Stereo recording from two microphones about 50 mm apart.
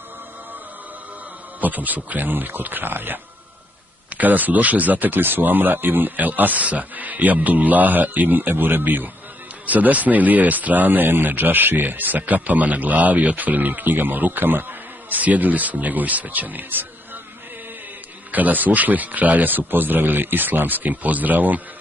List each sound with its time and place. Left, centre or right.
1.6 s speech: right
18.3 s speech: right